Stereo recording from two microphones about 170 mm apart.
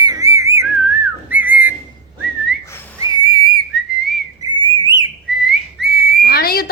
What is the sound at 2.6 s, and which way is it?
Whistling, 15° left (ahead or behind).